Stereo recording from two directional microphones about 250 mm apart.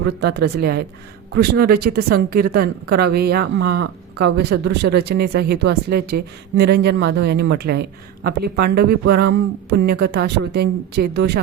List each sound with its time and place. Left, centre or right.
0.0 s speech: right